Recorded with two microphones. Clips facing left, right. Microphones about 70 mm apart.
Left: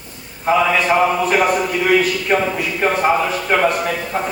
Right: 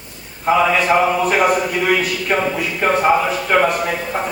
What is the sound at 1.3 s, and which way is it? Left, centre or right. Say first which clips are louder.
A man's voice: even; centre.